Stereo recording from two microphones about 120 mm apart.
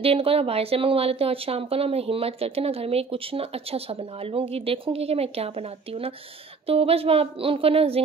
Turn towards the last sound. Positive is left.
turn(degrees=-55)  # may be behind; listen again after turning